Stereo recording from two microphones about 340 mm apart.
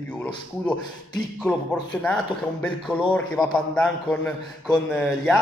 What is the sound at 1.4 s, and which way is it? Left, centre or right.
A man's voice, centre.